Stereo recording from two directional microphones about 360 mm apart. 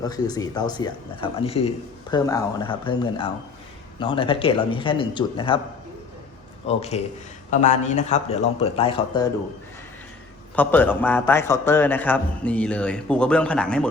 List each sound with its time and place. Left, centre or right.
0.0 s speech: centre
6.7 s speech: centre
10.5 s a man's voice: centre